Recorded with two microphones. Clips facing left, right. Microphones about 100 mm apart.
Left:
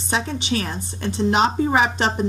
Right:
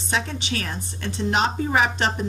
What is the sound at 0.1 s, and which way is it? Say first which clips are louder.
A woman's voice: left 3 dB; 25° left (ahead or behind).